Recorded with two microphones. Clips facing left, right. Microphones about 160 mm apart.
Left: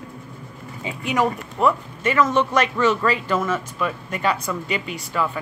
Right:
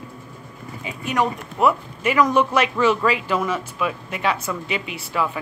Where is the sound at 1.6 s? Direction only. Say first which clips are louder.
Right 1 dB; 10° right (ahead or behind).